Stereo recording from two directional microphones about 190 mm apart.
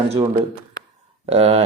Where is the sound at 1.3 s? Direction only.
30° right (ahead or behind).